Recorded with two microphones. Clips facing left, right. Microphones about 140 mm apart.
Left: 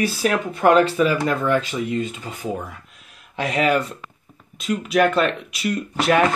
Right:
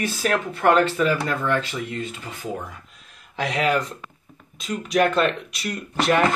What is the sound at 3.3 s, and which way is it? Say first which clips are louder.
Speech: left 2 dB; centre (ahead or behind).